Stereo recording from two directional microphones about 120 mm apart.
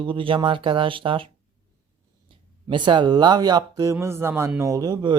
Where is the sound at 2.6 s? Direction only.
40° right (ahead or behind).